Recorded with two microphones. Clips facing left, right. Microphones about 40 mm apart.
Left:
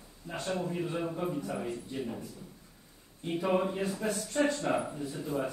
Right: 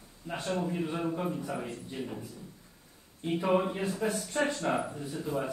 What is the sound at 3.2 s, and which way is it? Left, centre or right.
A man's voice, centre.